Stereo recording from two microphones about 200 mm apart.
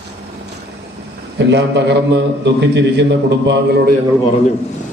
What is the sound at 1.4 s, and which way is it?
A man's voice, 60° right (ahead or behind).